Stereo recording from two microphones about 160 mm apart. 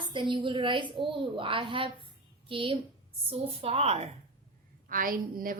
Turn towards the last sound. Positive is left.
turn(degrees=-60)  # may be behind; listen again after turning